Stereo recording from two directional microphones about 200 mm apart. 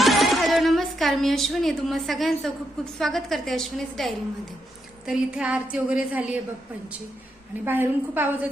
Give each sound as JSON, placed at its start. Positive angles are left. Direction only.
{"t": 0.0, "sound": "a sound", "side_deg": 0}
{"t": 3.0, "sound": "a woman's voice", "side_deg": 0}
{"t": 7.6, "sound": "a woman's voice", "side_deg": -10}